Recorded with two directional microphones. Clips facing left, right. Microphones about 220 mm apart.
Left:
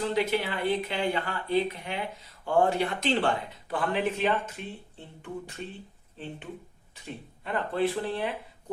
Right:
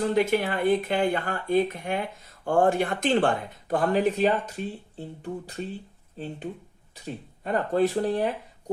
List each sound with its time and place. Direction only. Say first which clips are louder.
0.0 s speech: right 4 dB; 45° right (ahead or behind)